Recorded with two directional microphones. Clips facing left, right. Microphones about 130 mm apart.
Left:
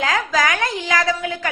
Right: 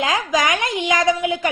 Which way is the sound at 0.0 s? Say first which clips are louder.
Even; 20° right (ahead or behind).